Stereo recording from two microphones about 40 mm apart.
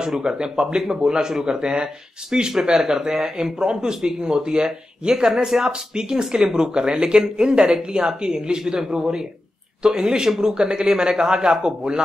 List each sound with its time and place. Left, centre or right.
0.0 s speech: centre